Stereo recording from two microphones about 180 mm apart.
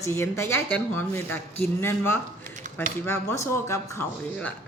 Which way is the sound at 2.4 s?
45° right (ahead or behind).